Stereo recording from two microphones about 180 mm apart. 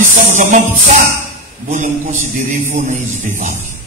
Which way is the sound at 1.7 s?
40° right (ahead or behind).